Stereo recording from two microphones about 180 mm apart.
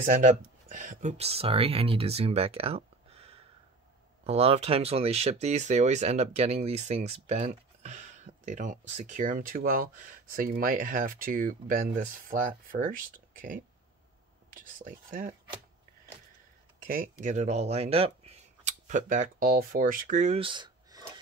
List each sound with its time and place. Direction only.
0.0 s speech: 50° right (ahead or behind)
16.8 s speech: 50° right (ahead or behind)
20.3 s a sound: 25° right (ahead or behind)